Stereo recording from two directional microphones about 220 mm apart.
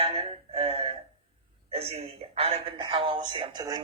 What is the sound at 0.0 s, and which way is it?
A woman's voice, 25° right (ahead or behind).